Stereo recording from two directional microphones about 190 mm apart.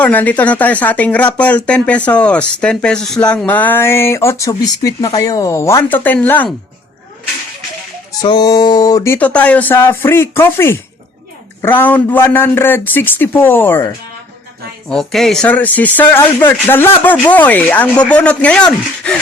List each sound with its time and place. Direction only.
0.0 s speech: 10° left (ahead or behind)
8.2 s a sound: 20° left (ahead or behind)
9.1 s speech: 5° left (ahead or behind)